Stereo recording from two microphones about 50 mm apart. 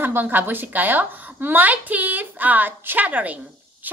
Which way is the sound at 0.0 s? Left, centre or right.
Right.